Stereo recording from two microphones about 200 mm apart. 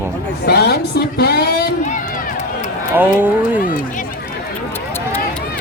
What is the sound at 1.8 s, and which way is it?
Run, 40° left (ahead or behind).